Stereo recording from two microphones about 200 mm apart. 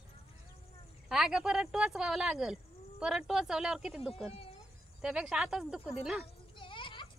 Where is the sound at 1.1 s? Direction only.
5° right (ahead or behind).